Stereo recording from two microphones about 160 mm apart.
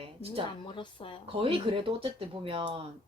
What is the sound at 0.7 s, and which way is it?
Speech, 30° left (ahead or behind).